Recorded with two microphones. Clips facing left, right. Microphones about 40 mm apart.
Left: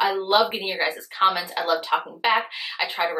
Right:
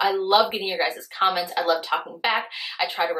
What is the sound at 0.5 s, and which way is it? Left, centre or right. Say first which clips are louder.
Speech: right 1 dB; centre.